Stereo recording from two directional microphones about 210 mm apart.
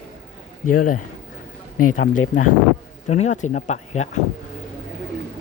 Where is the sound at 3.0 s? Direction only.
30° left (ahead or behind).